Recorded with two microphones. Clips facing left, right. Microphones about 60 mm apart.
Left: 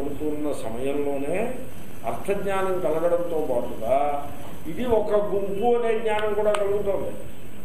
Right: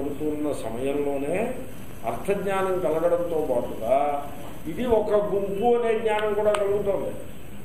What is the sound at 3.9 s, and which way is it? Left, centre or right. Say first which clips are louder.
A man's voice: even; centre.